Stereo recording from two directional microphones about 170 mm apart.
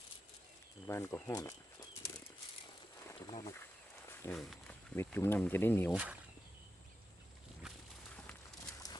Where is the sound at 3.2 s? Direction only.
25° left (ahead or behind).